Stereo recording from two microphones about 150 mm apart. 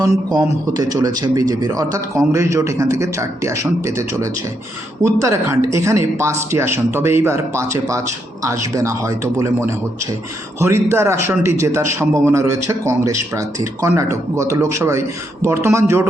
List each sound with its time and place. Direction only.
0.0 s a man's voice: 25° right (ahead or behind)
5.0 s a man's voice: 20° right (ahead or behind)